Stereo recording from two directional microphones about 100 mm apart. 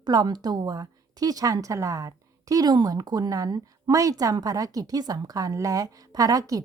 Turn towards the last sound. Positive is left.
turn(degrees=-35)  # may be behind; listen again after turning